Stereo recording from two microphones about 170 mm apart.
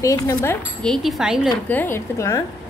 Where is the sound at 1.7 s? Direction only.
10° left (ahead or behind).